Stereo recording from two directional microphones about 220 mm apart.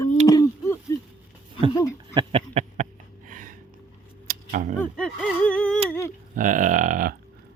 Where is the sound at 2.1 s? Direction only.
25° right (ahead or behind).